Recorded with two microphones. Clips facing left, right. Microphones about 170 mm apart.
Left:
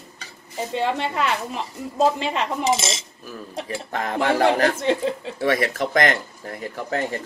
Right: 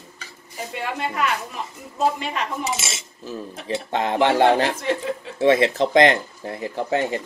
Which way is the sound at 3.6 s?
25° right (ahead or behind).